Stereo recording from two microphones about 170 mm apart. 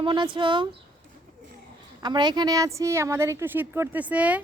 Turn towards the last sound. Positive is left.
turn(degrees=-10)  # may be behind; listen again after turning